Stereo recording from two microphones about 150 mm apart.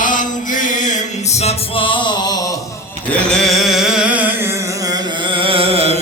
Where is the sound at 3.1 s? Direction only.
5° left (ahead or behind).